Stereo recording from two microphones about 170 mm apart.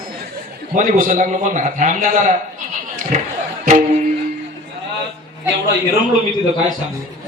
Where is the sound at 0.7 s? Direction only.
50° right (ahead or behind).